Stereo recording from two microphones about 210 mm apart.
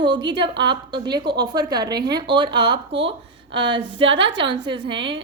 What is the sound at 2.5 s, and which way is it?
Speech, 50° right (ahead or behind).